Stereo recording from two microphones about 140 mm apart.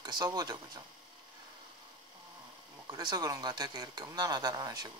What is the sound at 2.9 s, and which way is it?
Speech, 25° right (ahead or behind).